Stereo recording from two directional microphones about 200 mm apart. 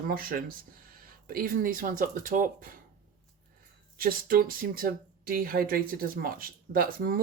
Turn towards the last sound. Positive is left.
turn(degrees=-45)  # may be behind; listen again after turning